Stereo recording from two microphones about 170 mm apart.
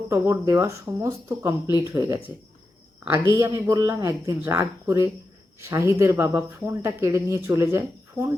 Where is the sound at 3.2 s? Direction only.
20° right (ahead or behind).